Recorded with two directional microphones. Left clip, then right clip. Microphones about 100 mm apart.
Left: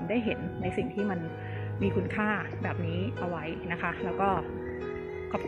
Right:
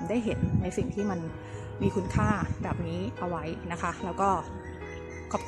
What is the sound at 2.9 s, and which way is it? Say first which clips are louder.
A woman's voice: even; 35° right (ahead or behind).